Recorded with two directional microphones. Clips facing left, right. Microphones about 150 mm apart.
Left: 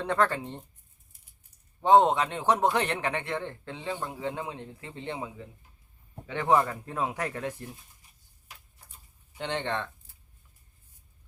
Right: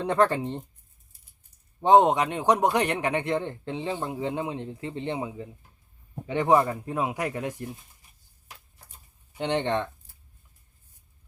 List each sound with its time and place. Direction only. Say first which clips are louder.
0.0 s a man's voice: right 4 dB; 20° right (ahead or behind)
1.8 s a man's voice: right 2 dB; 15° right (ahead or behind)
9.4 s a man's voice: right 6 dB; 20° right (ahead or behind)